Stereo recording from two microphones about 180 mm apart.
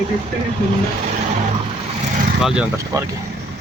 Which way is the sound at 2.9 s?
20° right (ahead or behind).